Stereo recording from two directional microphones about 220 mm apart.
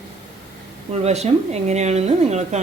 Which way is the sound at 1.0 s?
30° right (ahead or behind).